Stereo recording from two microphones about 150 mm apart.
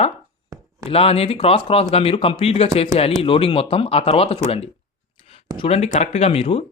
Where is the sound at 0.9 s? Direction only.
40° left (ahead or behind).